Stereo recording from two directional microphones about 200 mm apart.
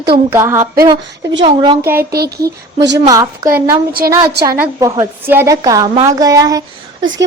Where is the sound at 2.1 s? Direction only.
50° right (ahead or behind).